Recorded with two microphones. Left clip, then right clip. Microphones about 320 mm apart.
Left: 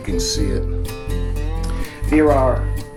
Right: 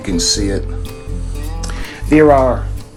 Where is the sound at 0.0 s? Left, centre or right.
Right.